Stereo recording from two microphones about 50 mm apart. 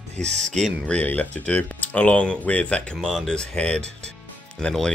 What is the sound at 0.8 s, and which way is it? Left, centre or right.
Speech, left.